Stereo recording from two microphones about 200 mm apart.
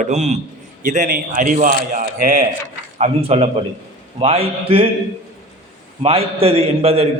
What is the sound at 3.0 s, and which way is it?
A man's voice, 30° right (ahead or behind).